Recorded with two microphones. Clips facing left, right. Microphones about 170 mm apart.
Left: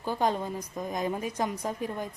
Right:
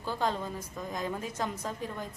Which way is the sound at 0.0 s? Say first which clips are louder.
Left 4 dB; 15° left (ahead or behind).